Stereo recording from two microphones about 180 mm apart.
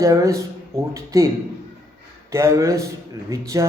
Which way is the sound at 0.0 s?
15° right (ahead or behind).